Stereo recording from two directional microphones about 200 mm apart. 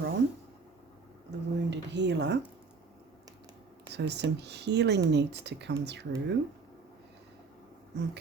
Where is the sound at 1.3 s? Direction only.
60° right (ahead or behind).